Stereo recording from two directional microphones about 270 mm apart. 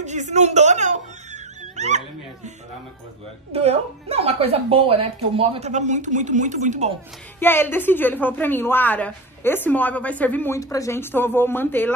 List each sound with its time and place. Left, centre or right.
0.0 s speech: right
3.5 s a woman's voice: right
7.3 s speech: centre